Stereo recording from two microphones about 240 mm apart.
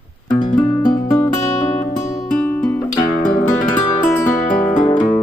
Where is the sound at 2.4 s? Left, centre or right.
Centre.